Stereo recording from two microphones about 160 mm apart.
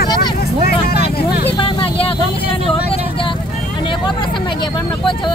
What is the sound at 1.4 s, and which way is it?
Vehicle, 35° left (ahead or behind).